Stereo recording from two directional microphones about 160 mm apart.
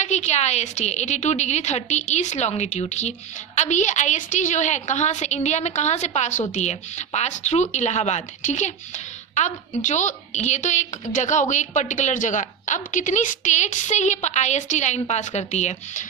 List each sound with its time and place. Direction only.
0.0 s a woman's voice: 45° left (ahead or behind)